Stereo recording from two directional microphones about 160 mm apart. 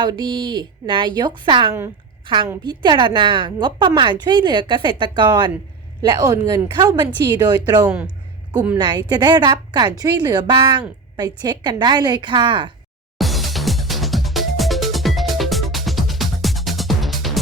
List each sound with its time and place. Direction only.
0.0 s a woman's voice: 30° right (ahead or behind)
7.9 s speech: 10° right (ahead or behind)
8.8 s a woman's voice: 30° right (ahead or behind)
13.1 s music: centre (ahead or behind)